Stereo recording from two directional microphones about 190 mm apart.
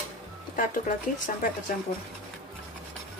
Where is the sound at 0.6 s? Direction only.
45° left (ahead or behind).